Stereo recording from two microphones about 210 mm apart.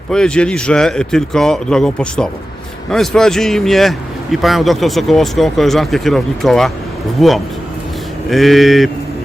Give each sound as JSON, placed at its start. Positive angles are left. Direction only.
{"t": 0.1, "sound": "speech", "side_deg": 5}